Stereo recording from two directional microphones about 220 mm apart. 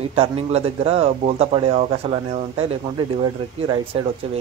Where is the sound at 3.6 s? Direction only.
20° right (ahead or behind).